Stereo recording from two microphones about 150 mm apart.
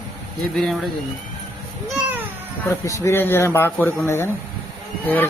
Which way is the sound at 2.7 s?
20° left (ahead or behind).